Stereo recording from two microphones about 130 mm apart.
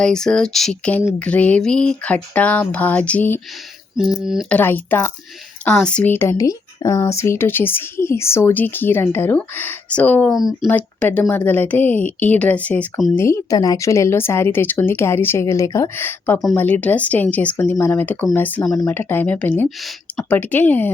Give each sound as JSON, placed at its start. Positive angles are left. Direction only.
{"t": 0.0, "sound": "speech", "side_deg": 5}
{"t": 3.9, "sound": "speech", "side_deg": -5}
{"t": 4.4, "sound": "speech", "side_deg": 15}
{"t": 10.3, "sound": "speech", "side_deg": 0}
{"t": 10.7, "sound": "speech", "side_deg": 10}
{"t": 13.1, "sound": "speech", "side_deg": 20}
{"t": 19.6, "sound": "speech", "side_deg": 0}
{"t": 20.3, "sound": "speech", "side_deg": 15}